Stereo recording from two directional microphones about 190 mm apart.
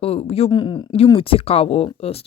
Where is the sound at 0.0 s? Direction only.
30° left (ahead or behind).